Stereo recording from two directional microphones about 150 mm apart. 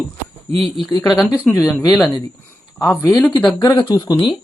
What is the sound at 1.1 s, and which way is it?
Speech, 10° right (ahead or behind).